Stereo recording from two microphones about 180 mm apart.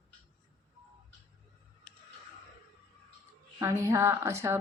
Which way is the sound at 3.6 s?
15° right (ahead or behind).